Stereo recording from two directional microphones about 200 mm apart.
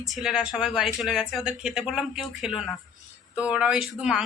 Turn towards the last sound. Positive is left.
turn(degrees=-5)  # may be behind; listen again after turning